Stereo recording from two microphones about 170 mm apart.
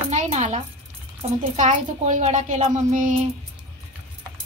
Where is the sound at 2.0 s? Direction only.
45° right (ahead or behind).